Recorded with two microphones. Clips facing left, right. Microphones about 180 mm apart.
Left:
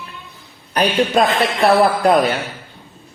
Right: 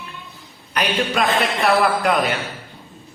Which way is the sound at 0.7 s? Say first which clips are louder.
Left 6 dB; 35° left (ahead or behind).